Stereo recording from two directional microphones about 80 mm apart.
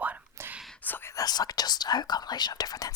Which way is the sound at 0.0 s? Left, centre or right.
Centre.